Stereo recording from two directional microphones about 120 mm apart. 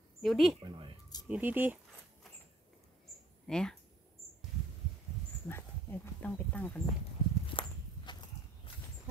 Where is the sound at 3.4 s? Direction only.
5° left (ahead or behind).